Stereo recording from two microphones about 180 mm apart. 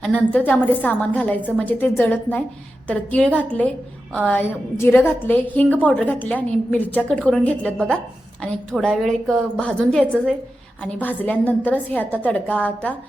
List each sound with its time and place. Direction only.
0.3 s a woman's voice: 10° left (ahead or behind)